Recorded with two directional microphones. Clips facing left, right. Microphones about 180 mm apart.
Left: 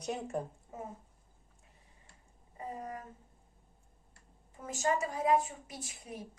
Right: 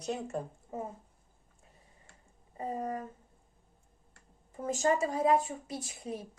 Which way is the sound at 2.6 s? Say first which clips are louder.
Right 6 dB; 35° right (ahead or behind).